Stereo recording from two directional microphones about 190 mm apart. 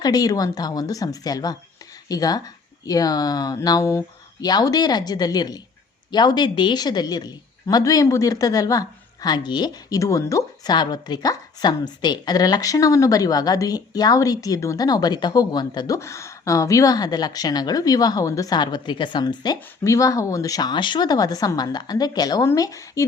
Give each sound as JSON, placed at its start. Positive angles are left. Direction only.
{"t": 0.0, "sound": "a woman's voice", "side_deg": 20}